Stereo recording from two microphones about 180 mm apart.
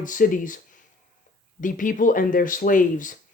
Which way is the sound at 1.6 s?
45° left (ahead or behind).